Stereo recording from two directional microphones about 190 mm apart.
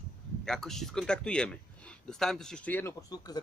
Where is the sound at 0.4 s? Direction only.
5° left (ahead or behind).